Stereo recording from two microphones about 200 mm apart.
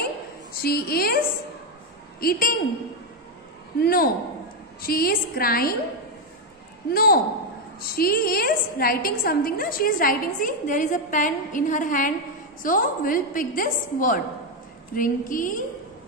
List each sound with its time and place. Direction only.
0.0 s a sound: 50° left (ahead or behind)
2.1 s a woman's voice: 50° left (ahead or behind)
3.8 s a woman's voice: 50° left (ahead or behind)
6.9 s a woman's voice: 50° left (ahead or behind)